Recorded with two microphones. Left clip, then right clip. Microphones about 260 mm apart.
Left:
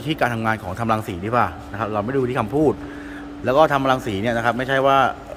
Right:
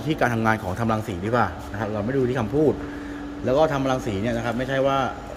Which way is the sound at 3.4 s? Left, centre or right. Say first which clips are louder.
Left 5 dB; centre.